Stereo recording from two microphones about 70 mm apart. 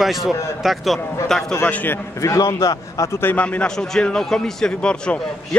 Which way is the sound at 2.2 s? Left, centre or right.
Left.